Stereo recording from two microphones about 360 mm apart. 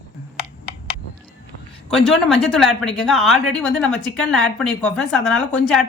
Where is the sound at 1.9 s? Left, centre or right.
Centre.